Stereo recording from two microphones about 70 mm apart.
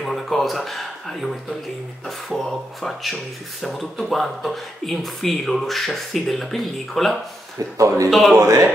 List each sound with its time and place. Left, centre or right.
0.0 s speech: centre
7.5 s speech: right
8.1 s speech: centre
8.4 s speech: right